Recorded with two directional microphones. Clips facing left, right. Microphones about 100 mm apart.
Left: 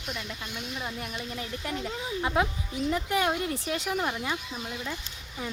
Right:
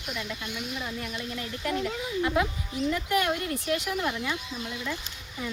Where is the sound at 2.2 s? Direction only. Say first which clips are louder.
Left 1 dB; 25° left (ahead or behind).